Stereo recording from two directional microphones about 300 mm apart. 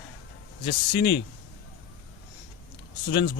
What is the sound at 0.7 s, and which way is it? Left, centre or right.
Speech, left.